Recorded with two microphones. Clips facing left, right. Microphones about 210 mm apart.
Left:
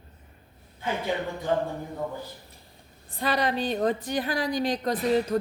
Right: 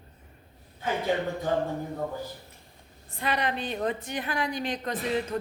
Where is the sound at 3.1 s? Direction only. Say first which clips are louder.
Left 3 dB; 35° left (ahead or behind).